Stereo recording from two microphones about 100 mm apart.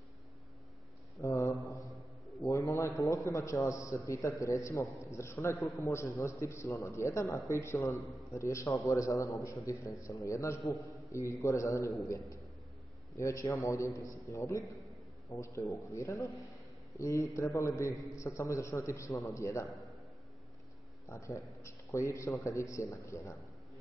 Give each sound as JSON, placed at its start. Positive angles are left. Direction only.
{"t": 1.2, "sound": "mantra", "side_deg": 30}
{"t": 2.4, "sound": "a man's voice", "side_deg": 30}
{"t": 13.1, "sound": "a man's voice", "side_deg": 30}
{"t": 21.1, "sound": "a man's voice", "side_deg": 30}